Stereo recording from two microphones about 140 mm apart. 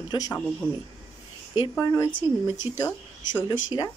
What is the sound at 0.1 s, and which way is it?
Speech, 25° left (ahead or behind).